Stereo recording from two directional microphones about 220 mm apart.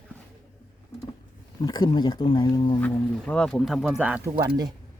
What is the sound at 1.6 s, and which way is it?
Speech, 20° left (ahead or behind).